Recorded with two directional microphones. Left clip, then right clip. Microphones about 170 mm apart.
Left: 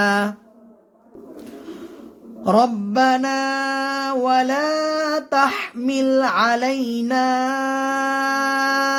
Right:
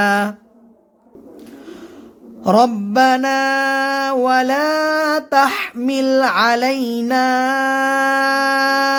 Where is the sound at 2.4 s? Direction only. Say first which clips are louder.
Right 3 dB; 25° right (ahead or behind).